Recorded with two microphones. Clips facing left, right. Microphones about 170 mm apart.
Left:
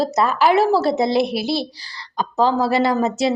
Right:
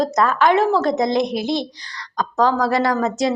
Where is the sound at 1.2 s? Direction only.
5° left (ahead or behind).